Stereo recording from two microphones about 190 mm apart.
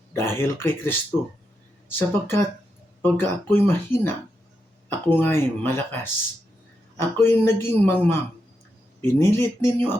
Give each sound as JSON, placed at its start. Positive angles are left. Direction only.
{"t": 0.1, "sound": "speech", "side_deg": 10}